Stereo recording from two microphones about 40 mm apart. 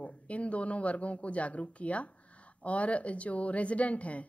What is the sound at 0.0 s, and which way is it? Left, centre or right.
Speech, left.